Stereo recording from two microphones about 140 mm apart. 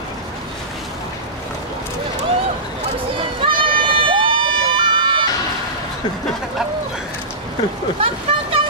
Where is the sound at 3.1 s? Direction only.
35° right (ahead or behind).